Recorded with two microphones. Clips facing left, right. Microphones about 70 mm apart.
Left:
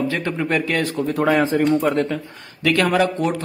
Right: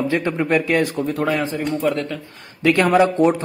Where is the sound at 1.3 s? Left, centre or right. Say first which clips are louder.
Left 5 dB; left.